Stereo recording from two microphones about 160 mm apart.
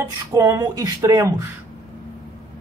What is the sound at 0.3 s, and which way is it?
Speech, 20° right (ahead or behind).